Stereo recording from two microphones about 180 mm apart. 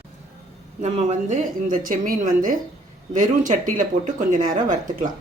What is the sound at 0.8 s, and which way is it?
Speech, 40° right (ahead or behind).